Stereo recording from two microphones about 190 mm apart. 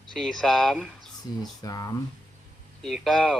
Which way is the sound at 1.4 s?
20° left (ahead or behind).